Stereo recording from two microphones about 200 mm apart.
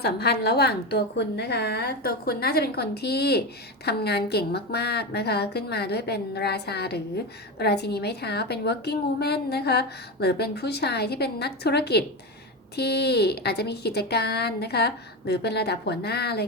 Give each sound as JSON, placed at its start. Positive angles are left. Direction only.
{"t": 0.0, "sound": "a woman's voice", "side_deg": 55}